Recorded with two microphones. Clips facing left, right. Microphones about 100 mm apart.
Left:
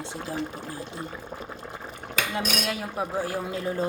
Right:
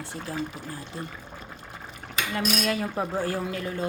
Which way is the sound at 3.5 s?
25° left (ahead or behind).